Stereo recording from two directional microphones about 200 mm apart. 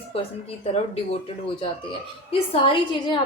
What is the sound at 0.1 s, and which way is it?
Speech, 30° left (ahead or behind).